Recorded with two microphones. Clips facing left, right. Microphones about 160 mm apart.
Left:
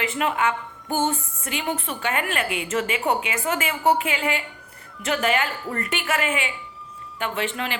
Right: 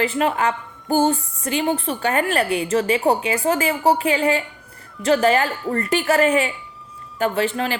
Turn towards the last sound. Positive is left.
turn(degrees=-35)  # may be behind; listen again after turning